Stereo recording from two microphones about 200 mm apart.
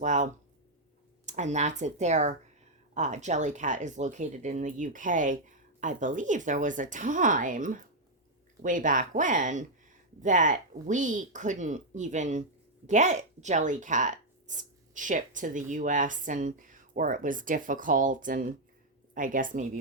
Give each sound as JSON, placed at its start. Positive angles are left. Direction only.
{"t": 0.0, "sound": "speech", "side_deg": -40}